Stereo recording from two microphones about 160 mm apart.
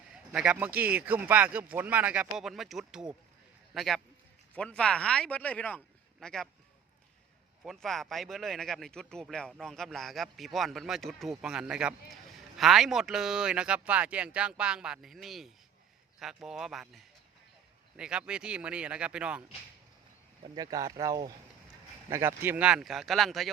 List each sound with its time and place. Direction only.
0.1 s speech: 5° right (ahead or behind)
7.6 s speech: centre (ahead or behind)
20.6 s speech: 20° right (ahead or behind); by 23.5 s centre (ahead or behind)